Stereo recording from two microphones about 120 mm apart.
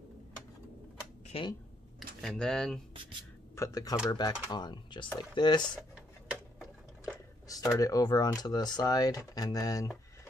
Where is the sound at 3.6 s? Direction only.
30° left (ahead or behind).